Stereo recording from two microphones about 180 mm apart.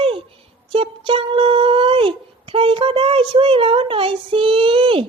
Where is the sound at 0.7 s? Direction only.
30° right (ahead or behind).